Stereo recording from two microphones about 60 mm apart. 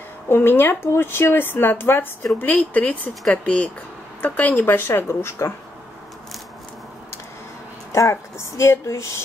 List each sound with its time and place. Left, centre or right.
0.3 s speech: left
2.3 s speech: left
7.9 s speech: left